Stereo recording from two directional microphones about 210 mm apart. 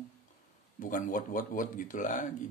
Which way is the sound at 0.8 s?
40° left (ahead or behind).